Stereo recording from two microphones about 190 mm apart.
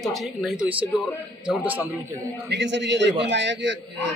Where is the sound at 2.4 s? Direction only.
65° right (ahead or behind).